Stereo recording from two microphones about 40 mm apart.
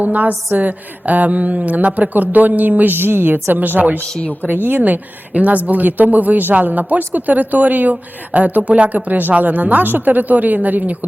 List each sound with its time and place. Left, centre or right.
0.0 s speech: right
3.3 s speech: right